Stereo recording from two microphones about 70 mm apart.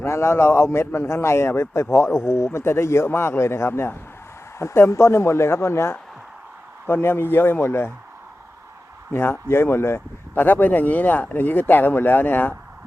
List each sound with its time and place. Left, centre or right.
0.0 s a man's voice: left
9.1 s speech: left